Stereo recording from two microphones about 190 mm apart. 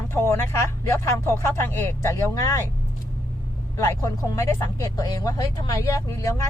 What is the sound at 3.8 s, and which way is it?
Speech, 15° left (ahead or behind).